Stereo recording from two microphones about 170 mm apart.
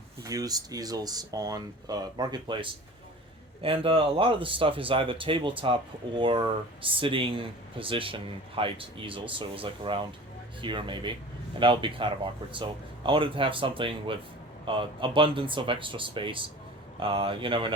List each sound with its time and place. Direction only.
0.3 s speech: 20° right (ahead or behind)